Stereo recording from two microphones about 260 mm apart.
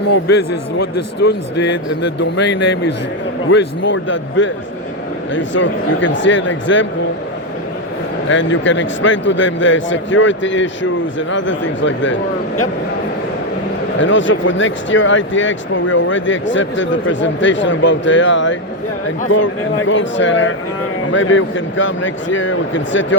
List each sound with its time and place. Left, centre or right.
0.1 s a man's voice: left
1.2 s speech: left
8.3 s speech: left
14.0 s speech: left